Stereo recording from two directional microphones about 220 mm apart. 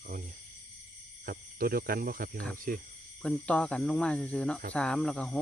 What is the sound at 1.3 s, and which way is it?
Speech, 40° right (ahead or behind).